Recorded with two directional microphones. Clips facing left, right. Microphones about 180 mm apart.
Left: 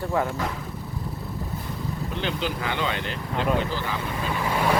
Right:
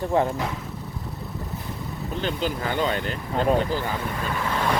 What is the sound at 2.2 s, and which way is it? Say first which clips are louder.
Speech: right 2 dB; 45° right (ahead or behind).